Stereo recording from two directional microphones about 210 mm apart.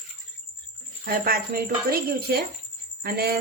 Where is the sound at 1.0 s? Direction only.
45° right (ahead or behind).